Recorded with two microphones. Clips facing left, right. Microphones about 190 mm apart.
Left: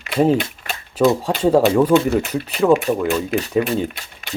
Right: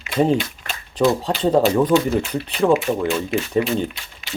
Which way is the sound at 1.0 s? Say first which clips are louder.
Left 2 dB; 5° left (ahead or behind).